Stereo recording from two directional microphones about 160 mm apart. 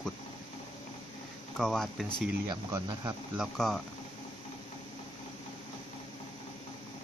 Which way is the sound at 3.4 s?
Centre (ahead or behind).